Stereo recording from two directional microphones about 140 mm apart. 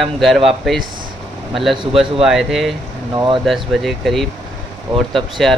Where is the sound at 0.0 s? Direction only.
Centre (ahead or behind).